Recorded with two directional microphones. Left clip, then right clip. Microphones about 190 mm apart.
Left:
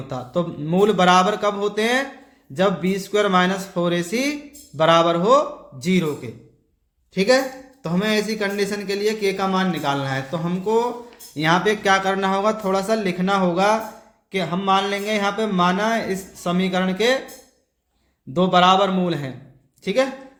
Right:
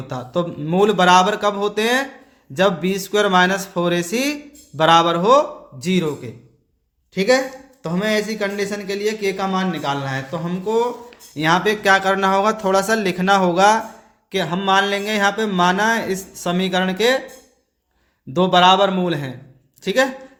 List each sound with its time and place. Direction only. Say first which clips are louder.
0.1 s speech: right 2 dB; 20° right (ahead or behind)
18.3 s a man's voice: right 2 dB; 25° right (ahead or behind)